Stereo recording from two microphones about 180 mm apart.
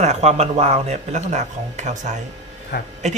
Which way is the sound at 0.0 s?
40° right (ahead or behind).